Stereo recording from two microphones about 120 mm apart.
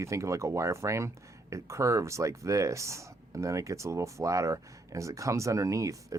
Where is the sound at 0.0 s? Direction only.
25° right (ahead or behind).